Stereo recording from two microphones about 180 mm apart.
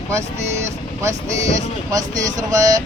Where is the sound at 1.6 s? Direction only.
20° right (ahead or behind).